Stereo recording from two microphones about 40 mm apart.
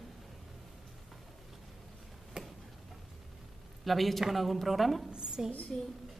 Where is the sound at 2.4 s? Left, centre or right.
Right.